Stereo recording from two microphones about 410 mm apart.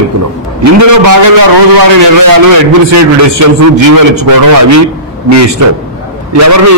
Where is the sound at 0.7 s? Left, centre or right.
Right.